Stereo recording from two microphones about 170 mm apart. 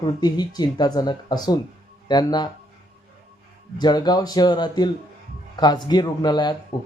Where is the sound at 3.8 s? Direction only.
25° left (ahead or behind).